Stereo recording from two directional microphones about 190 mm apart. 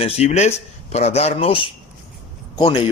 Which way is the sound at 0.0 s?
35° left (ahead or behind).